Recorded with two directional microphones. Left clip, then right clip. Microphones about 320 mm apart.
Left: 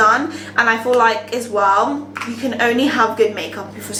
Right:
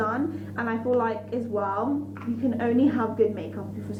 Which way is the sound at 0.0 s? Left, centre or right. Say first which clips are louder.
Left 14 dB; centre.